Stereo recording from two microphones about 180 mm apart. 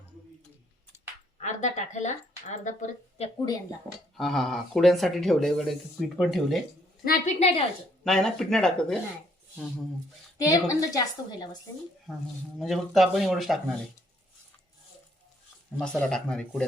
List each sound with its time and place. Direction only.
0.9 s a sound: 10° right (ahead or behind)
1.4 s speech: 40° left (ahead or behind)
4.2 s speech: centre (ahead or behind)
7.0 s a woman's voice: 50° left (ahead or behind)
7.3 s a woman's voice: 35° left (ahead or behind)
8.0 s speech: centre (ahead or behind)
10.3 s a woman's voice: 20° left (ahead or behind)
12.5 s speech: centre (ahead or behind)
15.8 s speech: 5° left (ahead or behind)